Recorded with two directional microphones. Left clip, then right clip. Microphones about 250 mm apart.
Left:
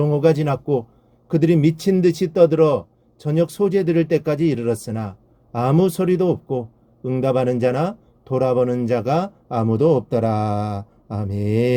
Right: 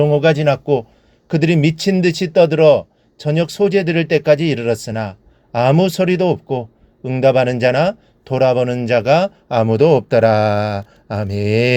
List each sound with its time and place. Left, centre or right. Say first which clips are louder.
0.0 s speech: right 5 dB; centre